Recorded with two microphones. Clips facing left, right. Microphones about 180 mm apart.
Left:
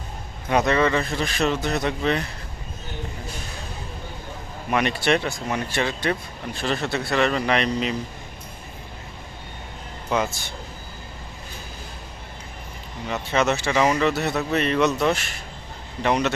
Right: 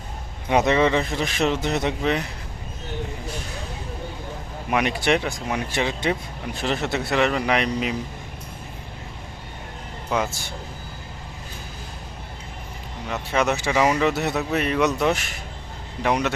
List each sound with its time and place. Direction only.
0.4 s a man's voice: 20° right (ahead or behind)
4.7 s speech: 10° right (ahead or behind)
13.1 s speech: 5° right (ahead or behind)